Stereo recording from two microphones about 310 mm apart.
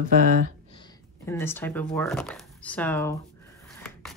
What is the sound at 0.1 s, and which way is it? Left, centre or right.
Speech, right.